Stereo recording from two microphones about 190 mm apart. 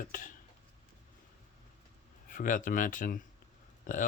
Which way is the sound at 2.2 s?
45° left (ahead or behind).